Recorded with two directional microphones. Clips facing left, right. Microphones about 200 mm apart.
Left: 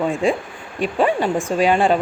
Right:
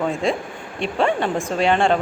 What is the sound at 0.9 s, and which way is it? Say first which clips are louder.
Speech: left 2 dB; 10° left (ahead or behind).